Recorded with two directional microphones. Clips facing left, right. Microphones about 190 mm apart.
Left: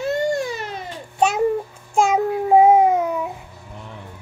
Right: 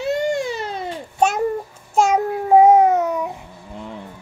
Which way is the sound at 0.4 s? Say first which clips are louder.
Right 1 dB; 30° right (ahead or behind).